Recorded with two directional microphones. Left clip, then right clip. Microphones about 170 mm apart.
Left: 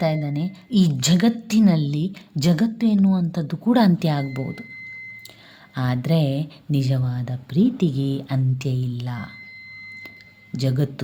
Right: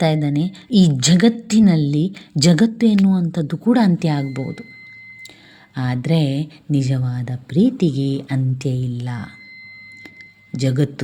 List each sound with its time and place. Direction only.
0.0 s a woman's voice: 25° right (ahead or behind); by 4.6 s 5° right (ahead or behind)
5.7 s a woman's voice: 5° right (ahead or behind)
10.5 s a woman's voice: 10° right (ahead or behind)